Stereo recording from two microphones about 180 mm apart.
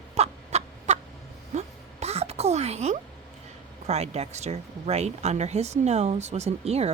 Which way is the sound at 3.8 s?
35° right (ahead or behind).